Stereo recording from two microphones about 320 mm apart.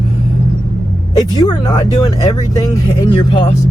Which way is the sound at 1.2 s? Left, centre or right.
Centre.